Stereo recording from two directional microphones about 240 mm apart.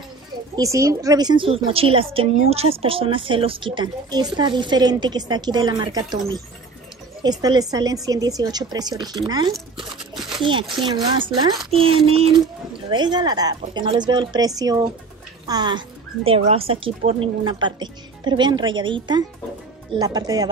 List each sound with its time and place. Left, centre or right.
0.6 s a woman's voice: centre